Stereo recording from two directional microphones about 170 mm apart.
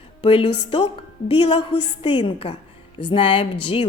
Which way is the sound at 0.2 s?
30° left (ahead or behind).